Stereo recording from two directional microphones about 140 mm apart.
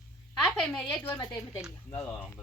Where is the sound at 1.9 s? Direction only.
15° left (ahead or behind).